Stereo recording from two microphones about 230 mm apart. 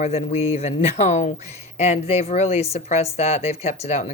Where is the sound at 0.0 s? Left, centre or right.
Left.